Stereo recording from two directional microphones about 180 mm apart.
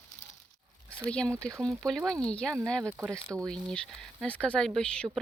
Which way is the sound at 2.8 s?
15° right (ahead or behind).